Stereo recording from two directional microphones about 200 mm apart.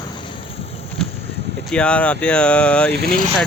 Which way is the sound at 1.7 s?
5° left (ahead or behind).